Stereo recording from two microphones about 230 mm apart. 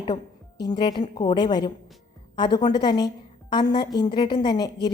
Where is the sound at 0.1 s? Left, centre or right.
Centre.